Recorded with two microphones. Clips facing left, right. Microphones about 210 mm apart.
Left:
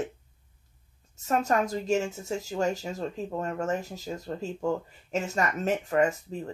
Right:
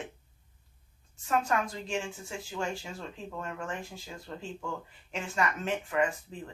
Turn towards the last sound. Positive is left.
turn(degrees=40)  # may be behind; listen again after turning